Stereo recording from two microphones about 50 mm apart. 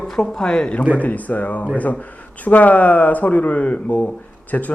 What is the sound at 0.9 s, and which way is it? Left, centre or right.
Speech, left.